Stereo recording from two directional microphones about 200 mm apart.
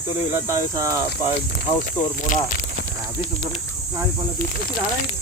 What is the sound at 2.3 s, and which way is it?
Speech, 40° left (ahead or behind).